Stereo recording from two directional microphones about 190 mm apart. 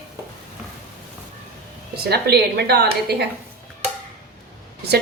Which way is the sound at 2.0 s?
55° right (ahead or behind).